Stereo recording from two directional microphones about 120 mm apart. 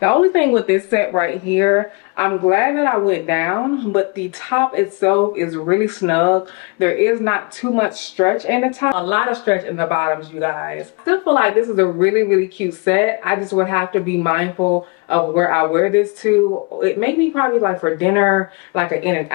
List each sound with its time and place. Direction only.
0.0 s speech: 20° left (ahead or behind)